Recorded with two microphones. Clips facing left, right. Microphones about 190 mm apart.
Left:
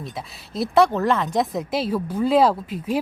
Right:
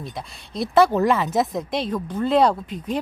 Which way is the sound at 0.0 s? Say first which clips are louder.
Even; centre (ahead or behind).